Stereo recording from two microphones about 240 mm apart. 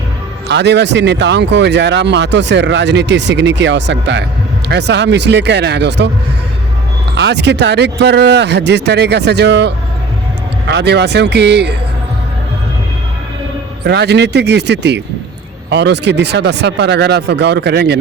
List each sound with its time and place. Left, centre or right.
0.4 s speech: right
7.2 s speech: right
13.8 s speech: right